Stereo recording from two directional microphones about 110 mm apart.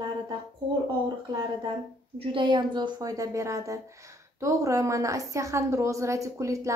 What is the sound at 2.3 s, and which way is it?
A woman's voice, 45° right (ahead or behind).